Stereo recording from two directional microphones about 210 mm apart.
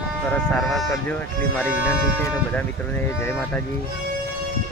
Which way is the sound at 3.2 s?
10° left (ahead or behind).